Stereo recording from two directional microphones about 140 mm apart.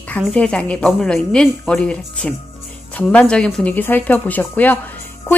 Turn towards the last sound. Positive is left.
turn(degrees=10)  # may be behind; listen again after turning